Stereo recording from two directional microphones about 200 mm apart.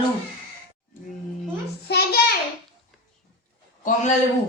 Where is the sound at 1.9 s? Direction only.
50° left (ahead or behind).